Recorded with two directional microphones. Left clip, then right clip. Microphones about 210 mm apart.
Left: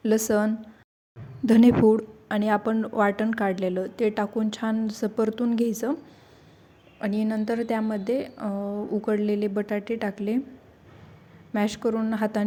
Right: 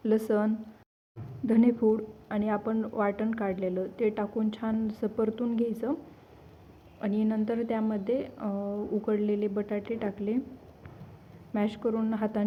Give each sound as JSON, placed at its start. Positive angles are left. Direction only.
{"t": 0.0, "sound": "a woman's voice", "side_deg": 35}
{"t": 7.0, "sound": "a woman's voice", "side_deg": 35}
{"t": 11.5, "sound": "a woman's voice", "side_deg": 35}